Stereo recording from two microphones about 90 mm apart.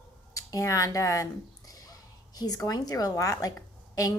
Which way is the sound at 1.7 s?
45° left (ahead or behind).